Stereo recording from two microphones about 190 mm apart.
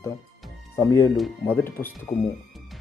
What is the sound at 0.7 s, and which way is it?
Speech, 15° left (ahead or behind).